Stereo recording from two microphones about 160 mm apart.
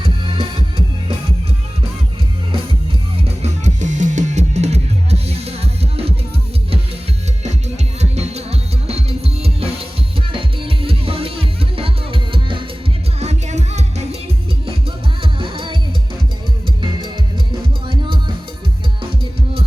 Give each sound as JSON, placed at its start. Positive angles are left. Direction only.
{"t": 0.0, "sound": "music", "side_deg": -30}
{"t": 3.2, "sound": "music", "side_deg": -40}
{"t": 8.1, "sound": "music", "side_deg": -40}
{"t": 13.1, "sound": "music", "side_deg": -45}
{"t": 15.2, "sound": "music", "side_deg": -35}
{"t": 17.8, "sound": "music", "side_deg": -30}